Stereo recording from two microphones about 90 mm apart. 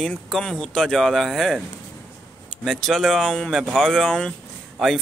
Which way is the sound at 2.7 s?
5° left (ahead or behind).